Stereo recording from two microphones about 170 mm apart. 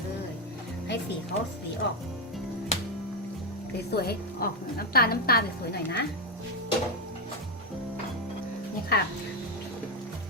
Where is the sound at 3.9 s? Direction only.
70° left (ahead or behind).